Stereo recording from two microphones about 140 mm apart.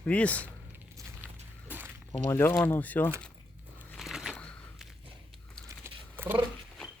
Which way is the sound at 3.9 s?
Centre (ahead or behind).